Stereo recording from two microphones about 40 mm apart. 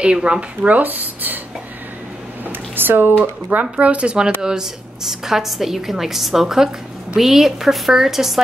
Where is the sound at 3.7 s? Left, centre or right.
Right.